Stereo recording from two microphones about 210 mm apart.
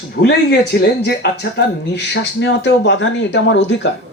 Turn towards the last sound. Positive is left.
turn(degrees=60)  # may be behind; listen again after turning